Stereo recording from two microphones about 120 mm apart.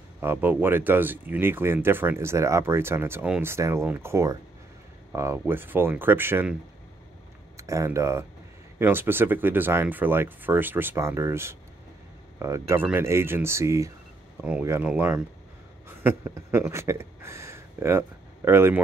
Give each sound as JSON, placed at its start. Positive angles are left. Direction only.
{"t": 0.2, "sound": "speech", "side_deg": -15}
{"t": 7.5, "sound": "speech", "side_deg": -25}